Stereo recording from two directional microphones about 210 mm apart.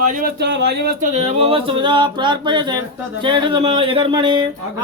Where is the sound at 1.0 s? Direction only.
30° right (ahead or behind).